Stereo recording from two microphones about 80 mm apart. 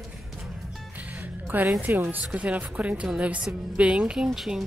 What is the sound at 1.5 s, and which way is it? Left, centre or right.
Speech, right.